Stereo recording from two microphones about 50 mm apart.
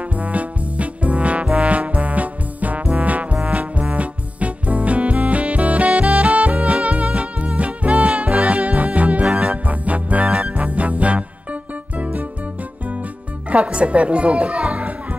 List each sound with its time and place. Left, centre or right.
0.0 s trombone: right
3.4 s brass instrument: right
3.9 s music: right
13.5 s music: right